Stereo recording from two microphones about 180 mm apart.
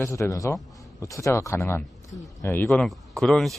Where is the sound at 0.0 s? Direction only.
15° left (ahead or behind).